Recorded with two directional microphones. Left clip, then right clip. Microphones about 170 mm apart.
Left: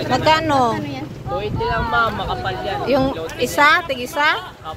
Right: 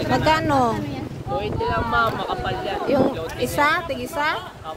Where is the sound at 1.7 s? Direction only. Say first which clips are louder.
Left 3 dB; 55° left (ahead or behind).